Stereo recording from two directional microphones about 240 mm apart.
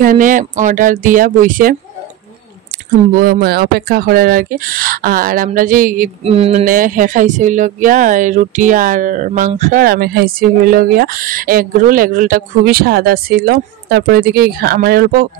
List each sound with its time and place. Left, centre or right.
0.0 s speech: right
3.2 s speech: right